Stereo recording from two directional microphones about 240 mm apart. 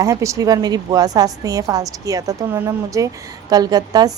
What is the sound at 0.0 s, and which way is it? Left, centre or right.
Speech, centre.